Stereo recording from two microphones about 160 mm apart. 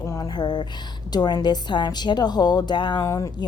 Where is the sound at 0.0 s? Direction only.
25° left (ahead or behind).